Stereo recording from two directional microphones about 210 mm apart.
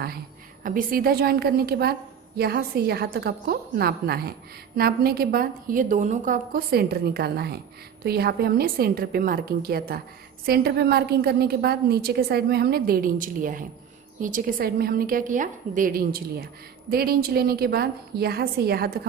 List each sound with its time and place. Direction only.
0.7 s a woman's voice: 40° right (ahead or behind)